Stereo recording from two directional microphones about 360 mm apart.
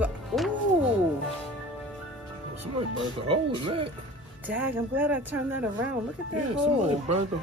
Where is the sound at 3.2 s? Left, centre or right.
Centre.